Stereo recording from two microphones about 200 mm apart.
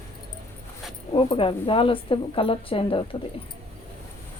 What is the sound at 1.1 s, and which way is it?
A woman's voice, 25° left (ahead or behind).